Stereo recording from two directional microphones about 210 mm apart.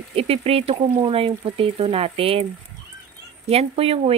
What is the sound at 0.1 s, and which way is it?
Speech, 30° right (ahead or behind).